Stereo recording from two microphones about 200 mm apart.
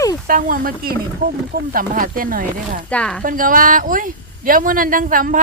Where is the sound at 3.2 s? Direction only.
45° right (ahead or behind).